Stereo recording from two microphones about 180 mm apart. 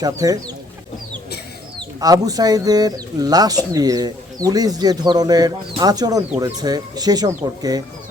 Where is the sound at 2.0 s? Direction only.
20° right (ahead or behind).